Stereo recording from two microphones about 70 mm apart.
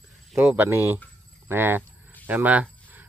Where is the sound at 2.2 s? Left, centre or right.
Right.